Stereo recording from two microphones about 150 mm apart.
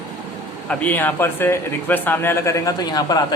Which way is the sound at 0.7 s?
10° left (ahead or behind).